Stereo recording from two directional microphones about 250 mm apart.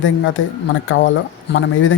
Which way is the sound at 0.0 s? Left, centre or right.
Left.